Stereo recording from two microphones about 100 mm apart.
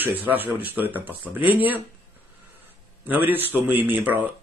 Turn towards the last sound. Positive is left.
turn(degrees=-20)  # may be behind; listen again after turning